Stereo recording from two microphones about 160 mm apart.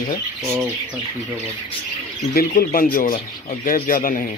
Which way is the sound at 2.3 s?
65° left (ahead or behind).